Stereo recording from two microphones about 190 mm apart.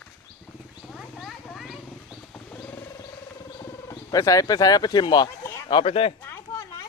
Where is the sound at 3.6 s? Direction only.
20° left (ahead or behind).